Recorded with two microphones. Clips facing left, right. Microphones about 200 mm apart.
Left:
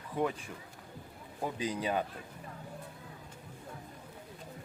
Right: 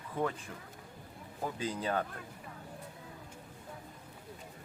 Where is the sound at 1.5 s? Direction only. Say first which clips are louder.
Left 1 dB; 15° left (ahead or behind).